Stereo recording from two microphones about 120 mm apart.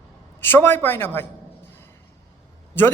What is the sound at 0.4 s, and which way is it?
Speech, 20° left (ahead or behind).